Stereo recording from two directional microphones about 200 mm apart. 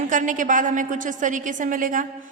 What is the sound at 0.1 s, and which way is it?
A woman's voice, 40° right (ahead or behind).